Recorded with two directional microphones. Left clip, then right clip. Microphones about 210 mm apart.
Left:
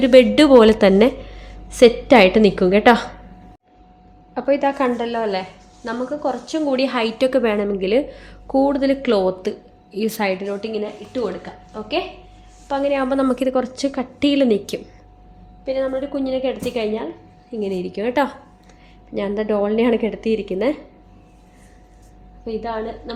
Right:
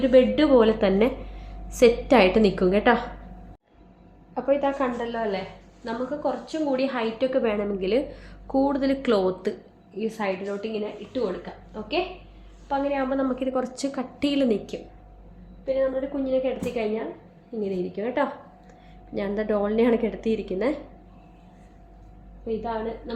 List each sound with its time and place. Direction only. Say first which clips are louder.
0.0 s a woman's voice: left 7 dB; 55° left (ahead or behind)
1.7 s a woman's voice: left 6 dB; 35° left (ahead or behind)
4.4 s a woman's voice: left 5 dB; 55° left (ahead or behind)
7.5 s a woman's voice: left 6 dB; 30° left (ahead or behind)
10.0 s a woman's voice: left 7 dB; 60° left (ahead or behind)
12.6 s a woman's voice: left 6 dB; 50° left (ahead or behind)
13.5 s a woman's voice: left 7 dB; 35° left (ahead or behind)
15.6 s a woman's voice: left 3 dB; 55° left (ahead or behind)
19.1 s a woman's voice: left 5 dB; 30° left (ahead or behind)
22.4 s a woman's voice: left 3 dB; 45° left (ahead or behind)